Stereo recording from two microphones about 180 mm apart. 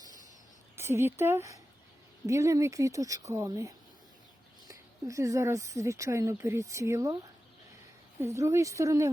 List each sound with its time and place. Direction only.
0.8 s speech: 15° right (ahead or behind)
4.7 s speech: 20° right (ahead or behind)
8.2 s speech: 15° right (ahead or behind)